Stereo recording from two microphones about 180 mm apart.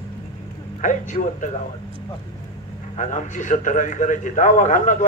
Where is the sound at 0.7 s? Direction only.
45° left (ahead or behind).